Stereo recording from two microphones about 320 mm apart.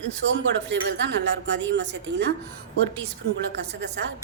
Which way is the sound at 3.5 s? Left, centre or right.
Right.